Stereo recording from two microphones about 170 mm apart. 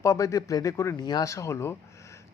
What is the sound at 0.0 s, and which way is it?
Speech, 20° left (ahead or behind).